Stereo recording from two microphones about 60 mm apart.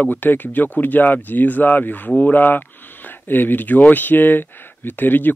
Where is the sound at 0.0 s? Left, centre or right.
Left.